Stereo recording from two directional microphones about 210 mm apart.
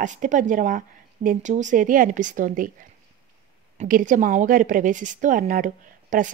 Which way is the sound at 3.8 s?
40° right (ahead or behind).